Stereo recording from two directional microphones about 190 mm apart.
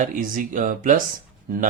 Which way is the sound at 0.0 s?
45° right (ahead or behind).